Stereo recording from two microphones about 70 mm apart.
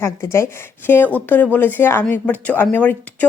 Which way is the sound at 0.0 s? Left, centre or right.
Left.